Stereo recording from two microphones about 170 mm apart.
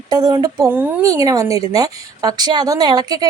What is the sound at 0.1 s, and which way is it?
Speech, 20° right (ahead or behind).